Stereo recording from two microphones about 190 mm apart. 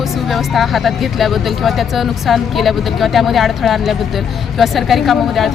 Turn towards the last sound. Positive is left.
turn(degrees=0)  # may be behind; listen again after turning